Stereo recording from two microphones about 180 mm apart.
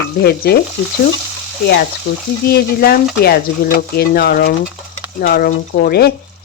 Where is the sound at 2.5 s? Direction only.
60° left (ahead or behind).